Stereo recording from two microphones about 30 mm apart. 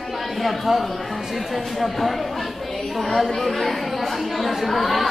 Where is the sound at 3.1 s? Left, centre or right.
Centre.